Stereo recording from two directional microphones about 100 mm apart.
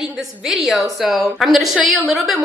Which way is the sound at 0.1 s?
Centre (ahead or behind).